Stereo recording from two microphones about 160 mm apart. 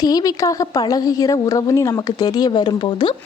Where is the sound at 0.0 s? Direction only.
25° left (ahead or behind).